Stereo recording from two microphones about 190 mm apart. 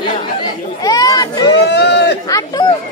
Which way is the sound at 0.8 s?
20° left (ahead or behind).